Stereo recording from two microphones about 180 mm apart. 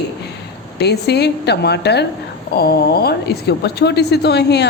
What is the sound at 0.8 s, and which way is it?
A woman's voice, 65° left (ahead or behind).